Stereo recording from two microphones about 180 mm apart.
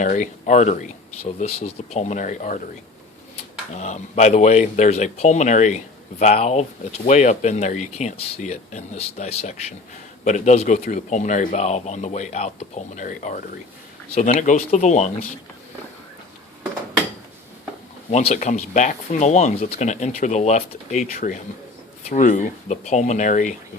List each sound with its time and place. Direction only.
0.0 s speech: 45° left (ahead or behind)
3.8 s speech: 40° left (ahead or behind)
18.1 s speech: 35° left (ahead or behind)